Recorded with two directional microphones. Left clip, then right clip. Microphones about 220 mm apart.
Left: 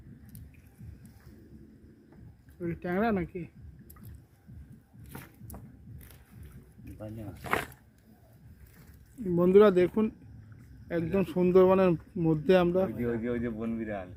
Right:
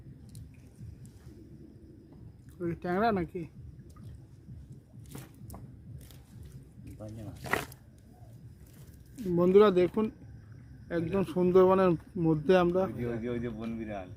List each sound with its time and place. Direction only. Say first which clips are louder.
2.6 s speech: right 1 dB; 5° right (ahead or behind)
7.0 s speech: left 2 dB; 15° right (ahead or behind)
9.3 s speech: left 1 dB; centre (ahead or behind)
13.0 s a man's voice: left 3 dB; 35° left (ahead or behind)